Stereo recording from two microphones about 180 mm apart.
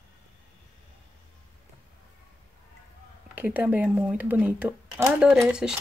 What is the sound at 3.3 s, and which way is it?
Speech, 10° right (ahead or behind).